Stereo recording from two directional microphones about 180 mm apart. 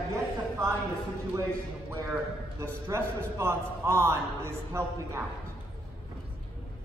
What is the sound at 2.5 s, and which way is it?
A man's voice, 15° right (ahead or behind).